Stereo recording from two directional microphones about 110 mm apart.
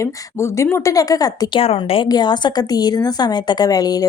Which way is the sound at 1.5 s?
60° left (ahead or behind).